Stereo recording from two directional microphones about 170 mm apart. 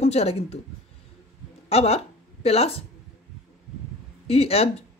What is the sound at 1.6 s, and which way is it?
A woman's voice, 35° left (ahead or behind).